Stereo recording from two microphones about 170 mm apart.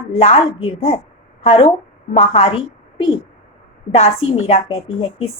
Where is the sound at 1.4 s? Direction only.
35° left (ahead or behind).